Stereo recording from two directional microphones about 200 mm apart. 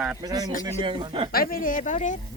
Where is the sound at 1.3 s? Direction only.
45° left (ahead or behind).